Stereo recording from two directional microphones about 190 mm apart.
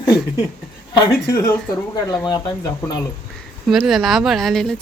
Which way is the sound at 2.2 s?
20° left (ahead or behind).